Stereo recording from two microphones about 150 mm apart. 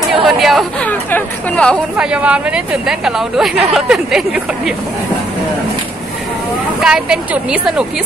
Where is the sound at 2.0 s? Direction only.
10° right (ahead or behind).